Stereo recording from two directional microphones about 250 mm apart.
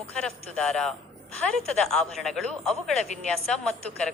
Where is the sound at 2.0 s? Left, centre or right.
Centre.